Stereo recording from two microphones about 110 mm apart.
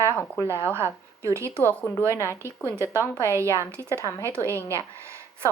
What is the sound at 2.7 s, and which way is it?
Speech, 25° right (ahead or behind).